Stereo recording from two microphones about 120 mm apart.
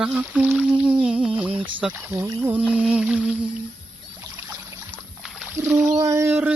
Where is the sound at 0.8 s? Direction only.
15° right (ahead or behind).